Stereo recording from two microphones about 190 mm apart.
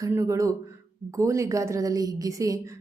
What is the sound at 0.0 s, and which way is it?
A woman's voice, 15° right (ahead or behind).